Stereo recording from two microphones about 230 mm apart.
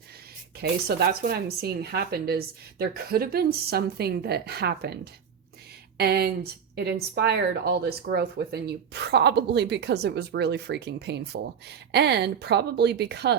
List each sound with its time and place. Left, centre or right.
0.6 s speech: right
6.0 s speech: right